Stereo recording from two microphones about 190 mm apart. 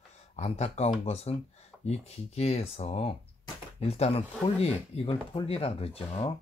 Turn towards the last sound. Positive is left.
turn(degrees=30)  # may be behind; listen again after turning